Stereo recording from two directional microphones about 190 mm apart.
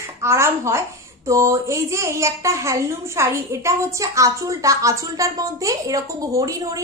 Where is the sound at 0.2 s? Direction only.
15° right (ahead or behind).